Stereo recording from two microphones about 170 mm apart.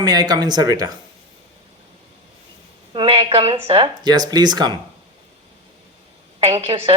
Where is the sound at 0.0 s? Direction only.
25° right (ahead or behind).